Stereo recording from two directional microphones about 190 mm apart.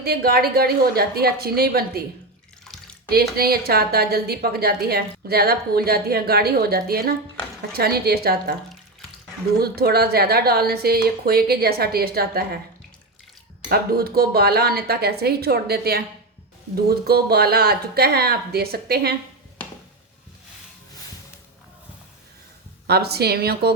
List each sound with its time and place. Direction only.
0.0 s a woman's voice: 55° right (ahead or behind)
3.1 s a woman's voice: 55° right (ahead or behind)
9.6 s speech: 55° right (ahead or behind)
13.7 s speech: 55° right (ahead or behind)
22.9 s speech: 55° right (ahead or behind)